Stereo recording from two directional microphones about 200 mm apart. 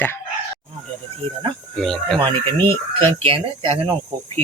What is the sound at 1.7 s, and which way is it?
Speech, centre (ahead or behind).